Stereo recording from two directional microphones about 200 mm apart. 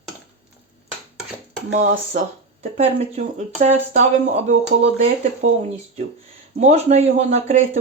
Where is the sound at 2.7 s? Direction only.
35° right (ahead or behind).